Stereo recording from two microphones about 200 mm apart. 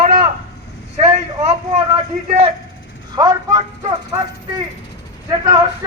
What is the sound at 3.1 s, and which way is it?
Speech, 20° right (ahead or behind).